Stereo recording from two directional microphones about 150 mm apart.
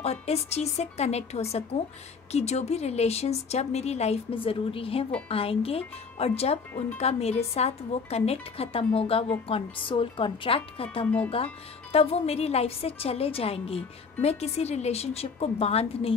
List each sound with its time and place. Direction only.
0.0 s a woman's voice: 45° left (ahead or behind)
11.1 s speech: 10° left (ahead or behind)
11.9 s a woman's voice: 40° left (ahead or behind)